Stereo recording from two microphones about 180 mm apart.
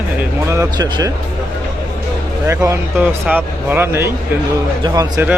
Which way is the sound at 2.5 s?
15° right (ahead or behind).